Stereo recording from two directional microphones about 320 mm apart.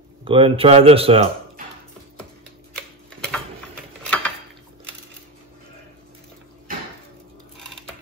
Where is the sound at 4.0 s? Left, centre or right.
Centre.